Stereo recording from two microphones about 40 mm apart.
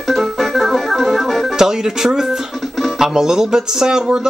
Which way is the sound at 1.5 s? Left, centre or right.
Centre.